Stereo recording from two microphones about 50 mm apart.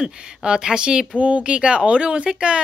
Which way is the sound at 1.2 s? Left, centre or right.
Right.